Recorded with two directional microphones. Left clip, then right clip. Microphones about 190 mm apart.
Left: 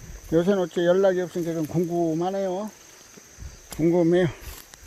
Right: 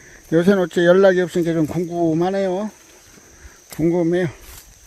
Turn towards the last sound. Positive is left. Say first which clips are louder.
# right 2 dB
turn(degrees=-15)  # may be behind; listen again after turning